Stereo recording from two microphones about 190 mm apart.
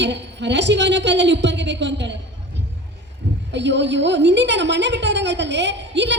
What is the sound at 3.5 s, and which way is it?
A woman's voice, 65° right (ahead or behind).